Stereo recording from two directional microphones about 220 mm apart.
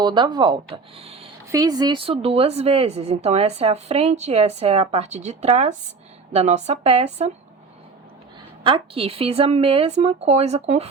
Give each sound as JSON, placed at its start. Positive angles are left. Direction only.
{"t": 0.0, "sound": "speech", "side_deg": -20}
{"t": 8.6, "sound": "speech", "side_deg": -25}